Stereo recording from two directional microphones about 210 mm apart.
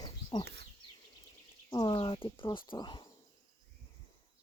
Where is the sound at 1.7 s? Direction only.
20° left (ahead or behind).